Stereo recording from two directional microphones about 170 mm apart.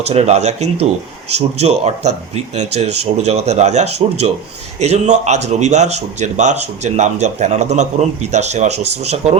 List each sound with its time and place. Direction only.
0.1 s speech: 40° right (ahead or behind)